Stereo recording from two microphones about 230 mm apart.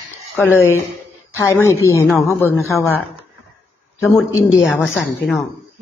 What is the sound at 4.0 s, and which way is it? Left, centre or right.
Speech, centre.